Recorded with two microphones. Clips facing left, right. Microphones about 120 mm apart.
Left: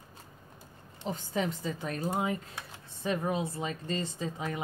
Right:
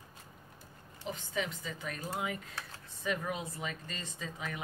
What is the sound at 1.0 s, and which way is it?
A woman's voice, 35° left (ahead or behind).